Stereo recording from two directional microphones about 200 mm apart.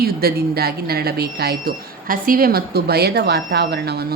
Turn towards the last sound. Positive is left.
turn(degrees=-50)  # may be behind; listen again after turning